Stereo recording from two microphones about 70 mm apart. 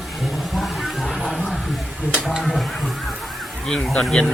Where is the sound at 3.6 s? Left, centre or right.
Centre.